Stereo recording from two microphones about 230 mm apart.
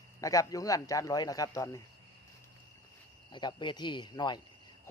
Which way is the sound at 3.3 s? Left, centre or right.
Centre.